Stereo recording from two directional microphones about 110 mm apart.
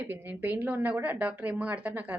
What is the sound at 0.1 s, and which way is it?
A woman's voice, 20° right (ahead or behind).